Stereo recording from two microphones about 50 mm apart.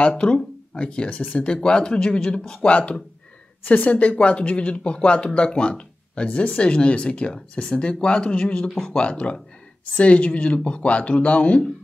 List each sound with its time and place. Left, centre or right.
0.0 s speech: centre